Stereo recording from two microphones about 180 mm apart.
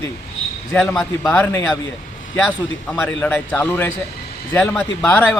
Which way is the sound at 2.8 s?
10° left (ahead or behind).